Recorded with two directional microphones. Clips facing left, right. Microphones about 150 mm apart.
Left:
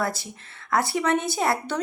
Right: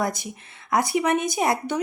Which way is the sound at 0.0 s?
15° right (ahead or behind).